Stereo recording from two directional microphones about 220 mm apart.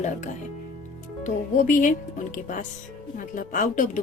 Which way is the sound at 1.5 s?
35° left (ahead or behind).